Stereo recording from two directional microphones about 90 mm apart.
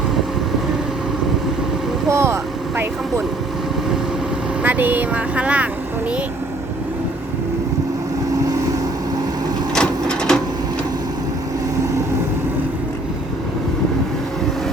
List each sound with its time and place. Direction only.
2.0 s vehicle: 30° right (ahead or behind)
4.6 s speech: 20° right (ahead or behind)
9.7 s printer: 10° left (ahead or behind)